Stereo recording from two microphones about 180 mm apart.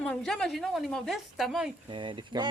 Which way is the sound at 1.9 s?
25° right (ahead or behind).